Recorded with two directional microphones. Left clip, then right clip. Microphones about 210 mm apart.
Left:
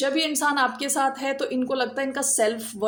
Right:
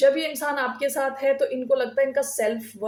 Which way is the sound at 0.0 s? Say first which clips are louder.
Right 3 dB; 45° left (ahead or behind).